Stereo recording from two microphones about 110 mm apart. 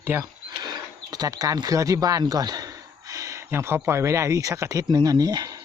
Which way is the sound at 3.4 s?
20° right (ahead or behind).